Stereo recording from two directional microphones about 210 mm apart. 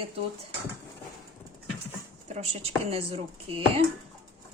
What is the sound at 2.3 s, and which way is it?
Speech, 30° right (ahead or behind).